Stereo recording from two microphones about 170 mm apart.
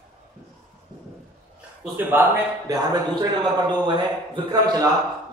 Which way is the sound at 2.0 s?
10° right (ahead or behind).